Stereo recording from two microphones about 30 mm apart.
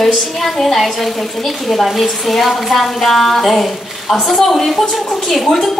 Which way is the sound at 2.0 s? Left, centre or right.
Centre.